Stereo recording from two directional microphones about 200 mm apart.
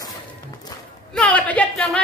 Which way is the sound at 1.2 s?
5° left (ahead or behind).